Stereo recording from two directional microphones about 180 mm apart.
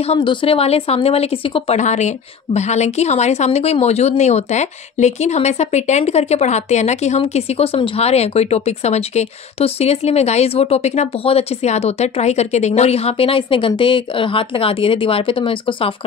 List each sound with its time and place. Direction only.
0.0 s a woman's voice: 30° left (ahead or behind)